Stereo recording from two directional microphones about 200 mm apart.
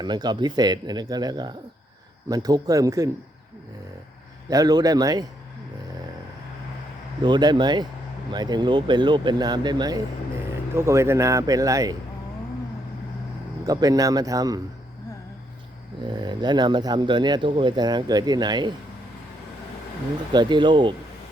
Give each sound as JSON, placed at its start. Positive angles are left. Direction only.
{"t": 0.0, "sound": "speech", "side_deg": -20}
{"t": 4.4, "sound": "speech", "side_deg": -20}
{"t": 7.2, "sound": "speech", "side_deg": -20}
{"t": 13.7, "sound": "speech", "side_deg": -20}
{"t": 16.0, "sound": "speech", "side_deg": -20}
{"t": 20.3, "sound": "speech", "side_deg": -20}